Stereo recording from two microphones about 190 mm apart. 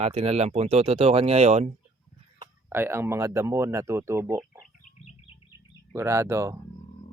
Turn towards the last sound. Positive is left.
turn(degrees=-15)  # may be behind; listen again after turning